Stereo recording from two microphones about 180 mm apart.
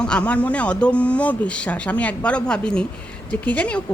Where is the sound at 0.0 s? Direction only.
5° left (ahead or behind).